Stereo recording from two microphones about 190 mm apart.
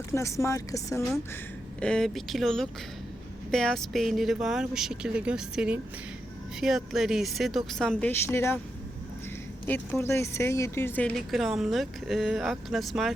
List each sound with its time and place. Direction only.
0.1 s speech: 15° left (ahead or behind)
1.8 s speech: 5° left (ahead or behind)
8.1 s speech: 15° left (ahead or behind)
9.6 s speech: 10° left (ahead or behind)